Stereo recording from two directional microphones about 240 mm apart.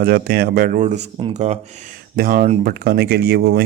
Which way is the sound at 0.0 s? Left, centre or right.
Right.